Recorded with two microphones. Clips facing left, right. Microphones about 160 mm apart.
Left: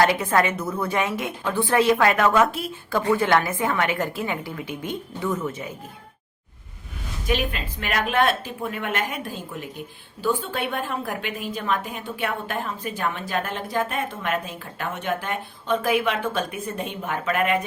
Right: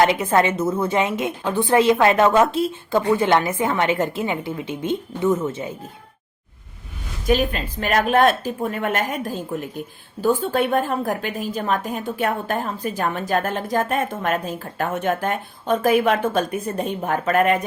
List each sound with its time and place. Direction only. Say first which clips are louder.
0.0 s a woman's voice: right 3 dB; 20° right (ahead or behind)
7.3 s a woman's voice: right 6 dB; 40° right (ahead or behind)